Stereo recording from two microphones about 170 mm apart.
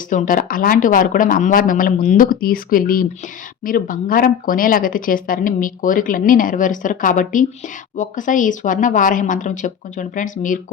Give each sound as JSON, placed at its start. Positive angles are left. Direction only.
{"t": 0.1, "sound": "speech", "side_deg": 50}